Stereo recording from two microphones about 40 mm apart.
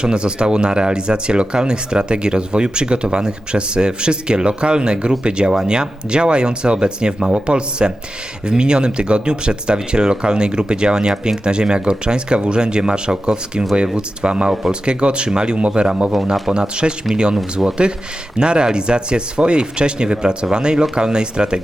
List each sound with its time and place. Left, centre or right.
0.0 s speech: right